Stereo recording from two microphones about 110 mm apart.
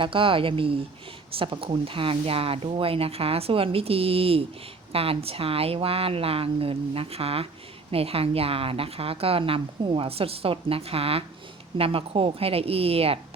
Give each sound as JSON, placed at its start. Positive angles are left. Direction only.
{"t": 0.0, "sound": "a woman's voice", "side_deg": -50}